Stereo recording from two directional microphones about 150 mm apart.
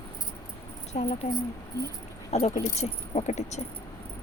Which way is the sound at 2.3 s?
45° left (ahead or behind).